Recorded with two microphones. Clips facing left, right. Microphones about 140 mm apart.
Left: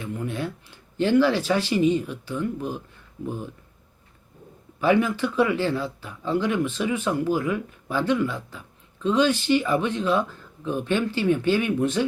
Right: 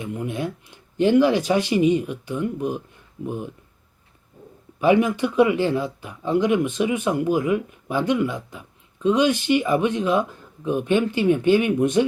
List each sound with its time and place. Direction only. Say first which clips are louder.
0.0 s speech: right 2 dB; 15° right (ahead or behind)
4.8 s speech: right 3 dB; 15° right (ahead or behind)